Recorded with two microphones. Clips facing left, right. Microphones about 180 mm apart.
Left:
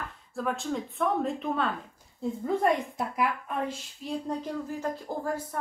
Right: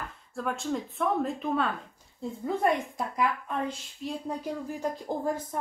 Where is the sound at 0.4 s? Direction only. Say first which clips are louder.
Even; centre (ahead or behind).